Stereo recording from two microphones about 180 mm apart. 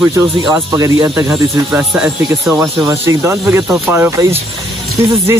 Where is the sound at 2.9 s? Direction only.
15° right (ahead or behind).